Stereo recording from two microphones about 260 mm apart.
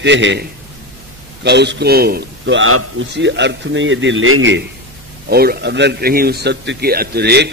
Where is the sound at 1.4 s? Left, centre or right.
Right.